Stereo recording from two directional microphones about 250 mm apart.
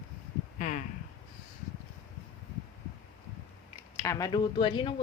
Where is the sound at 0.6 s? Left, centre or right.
Left.